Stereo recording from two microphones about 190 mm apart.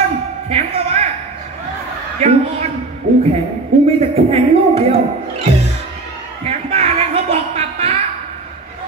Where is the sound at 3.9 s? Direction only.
30° right (ahead or behind).